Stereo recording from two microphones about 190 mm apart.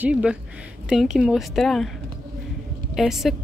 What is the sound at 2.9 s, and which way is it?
Speech, centre (ahead or behind).